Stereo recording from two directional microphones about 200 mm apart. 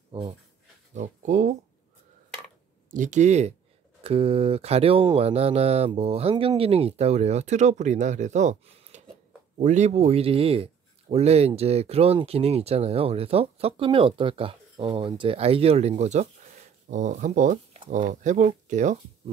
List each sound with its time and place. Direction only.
0.1 s a man's voice: 30° right (ahead or behind)
2.9 s a man's voice: 40° right (ahead or behind)